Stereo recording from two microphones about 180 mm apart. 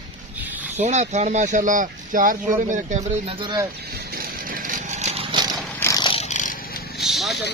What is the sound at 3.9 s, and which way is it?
Vehicle, 55° right (ahead or behind).